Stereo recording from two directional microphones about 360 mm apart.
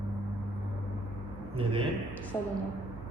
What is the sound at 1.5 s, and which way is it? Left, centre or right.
Speech, centre.